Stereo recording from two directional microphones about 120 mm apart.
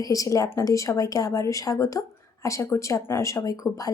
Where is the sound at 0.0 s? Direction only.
30° left (ahead or behind).